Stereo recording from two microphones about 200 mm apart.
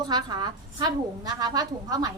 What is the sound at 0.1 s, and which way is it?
A woman's voice, 20° right (ahead or behind).